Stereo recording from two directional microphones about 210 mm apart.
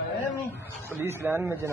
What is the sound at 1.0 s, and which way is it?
Speech, 10° right (ahead or behind).